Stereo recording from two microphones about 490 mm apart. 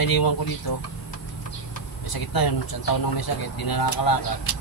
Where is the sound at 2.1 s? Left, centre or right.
Left.